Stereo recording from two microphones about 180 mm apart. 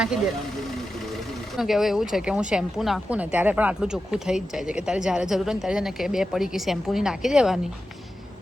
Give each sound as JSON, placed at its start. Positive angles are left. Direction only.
{"t": 1.5, "sound": "speech", "side_deg": 0}